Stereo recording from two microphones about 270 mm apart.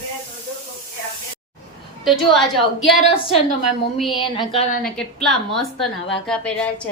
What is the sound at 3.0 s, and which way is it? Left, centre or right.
Speech, left.